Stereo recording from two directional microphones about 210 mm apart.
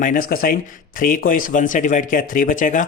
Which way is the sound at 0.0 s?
40° left (ahead or behind).